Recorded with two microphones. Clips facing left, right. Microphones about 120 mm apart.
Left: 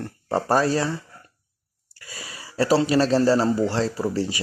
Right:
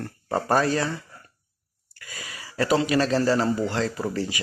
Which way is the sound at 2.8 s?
35° left (ahead or behind).